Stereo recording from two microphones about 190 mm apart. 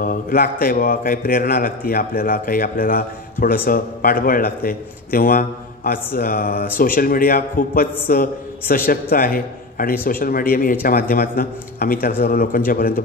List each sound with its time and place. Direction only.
0.0 s a man's voice: 50° left (ahead or behind)